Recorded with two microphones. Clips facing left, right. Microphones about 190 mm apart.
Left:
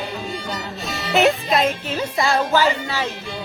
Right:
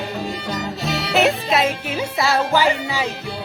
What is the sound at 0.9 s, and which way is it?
Music, 70° right (ahead or behind).